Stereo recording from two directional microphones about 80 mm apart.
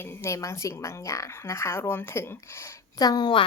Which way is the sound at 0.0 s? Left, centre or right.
Left.